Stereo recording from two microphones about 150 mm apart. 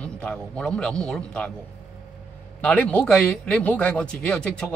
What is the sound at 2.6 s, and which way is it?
Speech, 10° left (ahead or behind).